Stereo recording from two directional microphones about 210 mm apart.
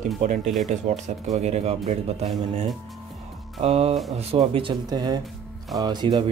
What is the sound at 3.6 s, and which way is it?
Speech, 30° right (ahead or behind).